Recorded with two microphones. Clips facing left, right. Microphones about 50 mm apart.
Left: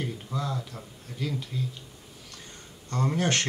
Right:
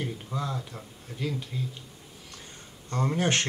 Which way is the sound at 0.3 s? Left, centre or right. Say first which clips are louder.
Left 1 dB; centre.